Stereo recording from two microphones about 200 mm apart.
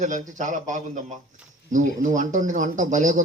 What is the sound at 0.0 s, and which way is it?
Speech, 40° right (ahead or behind).